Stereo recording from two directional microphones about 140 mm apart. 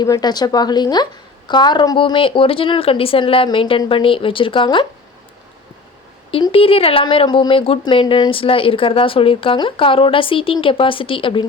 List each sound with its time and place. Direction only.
0.0 s speech: 30° left (ahead or behind)
6.5 s speech: 40° left (ahead or behind)